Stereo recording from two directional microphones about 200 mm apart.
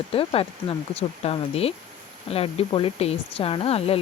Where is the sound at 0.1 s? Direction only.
30° left (ahead or behind).